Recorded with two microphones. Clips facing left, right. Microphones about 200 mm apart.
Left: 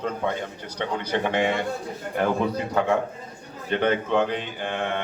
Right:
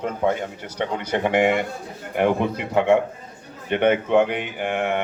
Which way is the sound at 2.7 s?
25° right (ahead or behind).